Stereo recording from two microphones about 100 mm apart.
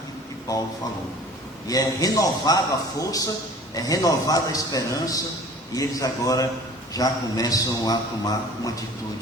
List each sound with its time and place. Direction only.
1.6 s a man's voice: 40° left (ahead or behind)